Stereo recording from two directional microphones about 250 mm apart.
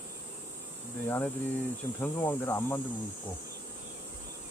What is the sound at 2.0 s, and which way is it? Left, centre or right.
Speech, centre.